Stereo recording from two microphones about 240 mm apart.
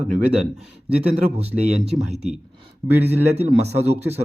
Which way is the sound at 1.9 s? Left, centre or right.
Right.